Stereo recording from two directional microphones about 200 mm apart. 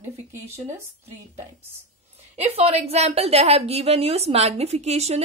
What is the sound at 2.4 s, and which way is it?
A woman's voice, 30° right (ahead or behind).